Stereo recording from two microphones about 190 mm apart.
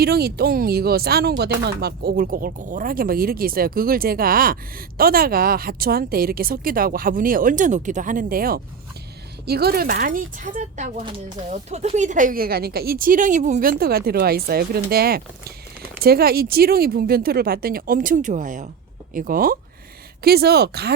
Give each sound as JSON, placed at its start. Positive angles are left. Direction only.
{"t": 0.0, "sound": "speech", "side_deg": -55}